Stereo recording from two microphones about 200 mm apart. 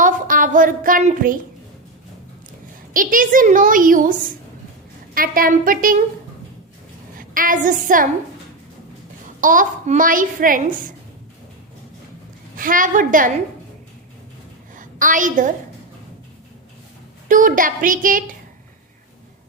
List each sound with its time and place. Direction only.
0.0 s speech: 40° right (ahead or behind)
2.9 s a woman's voice: 45° right (ahead or behind)
7.2 s a woman's voice: 45° right (ahead or behind)
9.4 s a child's voice: 40° right (ahead or behind)
12.5 s a woman's voice: 45° right (ahead or behind)
14.8 s a woman's voice: 40° right (ahead or behind)
17.2 s a woman's voice: 40° right (ahead or behind)